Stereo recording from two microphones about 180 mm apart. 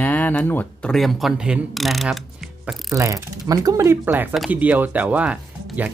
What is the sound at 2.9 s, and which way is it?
Speech, 15° right (ahead or behind).